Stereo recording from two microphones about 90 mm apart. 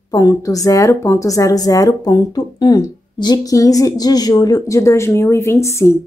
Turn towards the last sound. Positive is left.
turn(degrees=30)  # may be behind; listen again after turning